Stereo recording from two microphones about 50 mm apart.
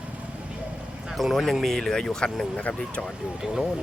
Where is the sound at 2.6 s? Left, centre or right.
Left.